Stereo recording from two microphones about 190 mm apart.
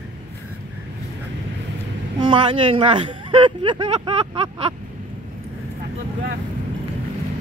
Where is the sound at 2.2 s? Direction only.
25° right (ahead or behind).